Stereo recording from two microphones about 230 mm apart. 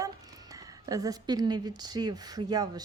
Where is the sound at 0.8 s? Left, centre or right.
Centre.